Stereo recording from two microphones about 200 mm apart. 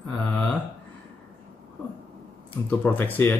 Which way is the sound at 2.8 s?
10° left (ahead or behind).